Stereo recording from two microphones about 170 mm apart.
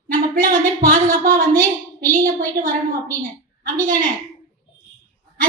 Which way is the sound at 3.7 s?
55° right (ahead or behind).